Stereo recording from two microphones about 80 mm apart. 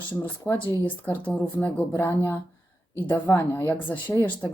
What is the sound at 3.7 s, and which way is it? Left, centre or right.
Speech, left.